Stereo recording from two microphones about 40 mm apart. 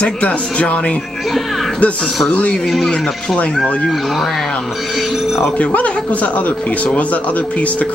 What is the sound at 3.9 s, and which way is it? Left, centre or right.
Speech, centre.